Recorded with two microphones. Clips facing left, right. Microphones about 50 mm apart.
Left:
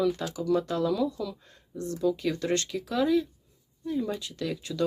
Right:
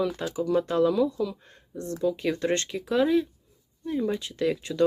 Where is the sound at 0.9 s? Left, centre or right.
Centre.